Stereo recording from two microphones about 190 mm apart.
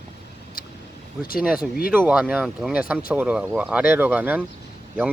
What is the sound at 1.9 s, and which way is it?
Speech, 5° right (ahead or behind).